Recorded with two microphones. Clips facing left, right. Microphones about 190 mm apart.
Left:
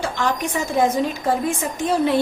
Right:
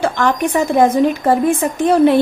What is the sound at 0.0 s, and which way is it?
A woman's voice, 60° right (ahead or behind).